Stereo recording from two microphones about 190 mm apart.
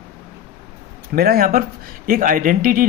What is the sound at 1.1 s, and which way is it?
Speech, 50° right (ahead or behind).